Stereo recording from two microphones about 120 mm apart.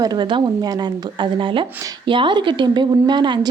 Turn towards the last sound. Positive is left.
turn(degrees=-40)  # may be behind; listen again after turning